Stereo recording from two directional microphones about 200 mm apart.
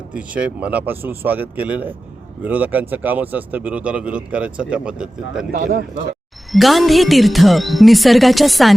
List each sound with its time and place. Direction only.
0.1 s speech: 5° right (ahead or behind)
5.5 s a man's voice: 45° right (ahead or behind)
6.5 s speech: centre (ahead or behind)